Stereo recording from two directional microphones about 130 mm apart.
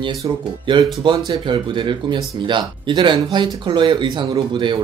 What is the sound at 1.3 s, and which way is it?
Speech, 40° right (ahead or behind).